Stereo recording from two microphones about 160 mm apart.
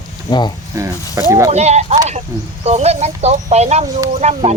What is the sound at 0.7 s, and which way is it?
Speech, 20° right (ahead or behind).